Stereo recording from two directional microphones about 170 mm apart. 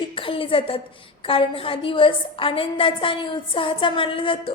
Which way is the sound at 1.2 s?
30° left (ahead or behind).